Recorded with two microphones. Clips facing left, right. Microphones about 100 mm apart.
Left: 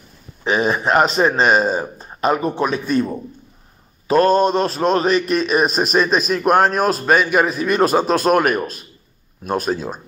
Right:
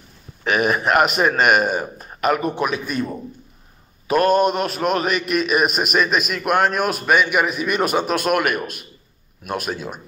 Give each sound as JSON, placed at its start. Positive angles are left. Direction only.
{"t": 0.4, "sound": "a man's voice", "side_deg": 20}
{"t": 4.1, "sound": "a man's voice", "side_deg": 30}